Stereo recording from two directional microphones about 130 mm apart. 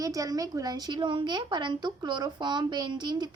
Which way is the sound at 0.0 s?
25° right (ahead or behind).